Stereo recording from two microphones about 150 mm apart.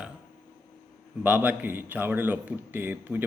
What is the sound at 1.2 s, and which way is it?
A man's voice, 10° right (ahead or behind).